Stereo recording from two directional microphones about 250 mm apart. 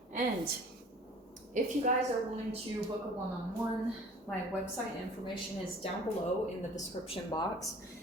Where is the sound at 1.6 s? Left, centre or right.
Right.